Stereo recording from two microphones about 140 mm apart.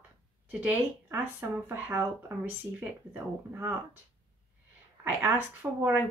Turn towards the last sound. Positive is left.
turn(degrees=-15)  # may be behind; listen again after turning